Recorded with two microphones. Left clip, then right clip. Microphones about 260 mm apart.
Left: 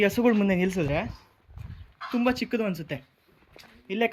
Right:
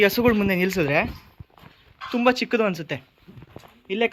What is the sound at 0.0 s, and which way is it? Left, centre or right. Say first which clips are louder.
Speech: right 4 dB; centre.